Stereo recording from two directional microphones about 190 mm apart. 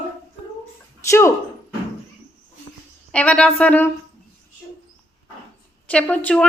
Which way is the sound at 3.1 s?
5° left (ahead or behind).